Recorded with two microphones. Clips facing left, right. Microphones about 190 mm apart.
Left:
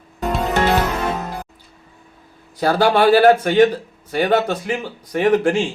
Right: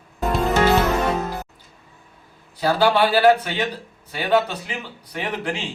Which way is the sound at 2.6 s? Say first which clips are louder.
Left 3 dB; 45° left (ahead or behind).